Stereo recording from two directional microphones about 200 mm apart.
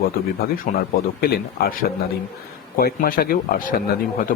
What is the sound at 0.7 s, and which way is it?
Speech, 40° left (ahead or behind).